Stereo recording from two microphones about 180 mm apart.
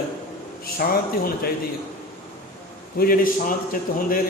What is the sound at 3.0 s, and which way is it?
Speech, 55° left (ahead or behind).